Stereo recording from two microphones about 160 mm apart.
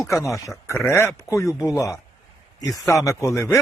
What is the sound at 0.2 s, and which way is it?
Speech, 20° left (ahead or behind).